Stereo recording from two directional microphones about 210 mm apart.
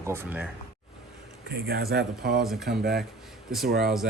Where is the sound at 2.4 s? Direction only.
Centre (ahead or behind).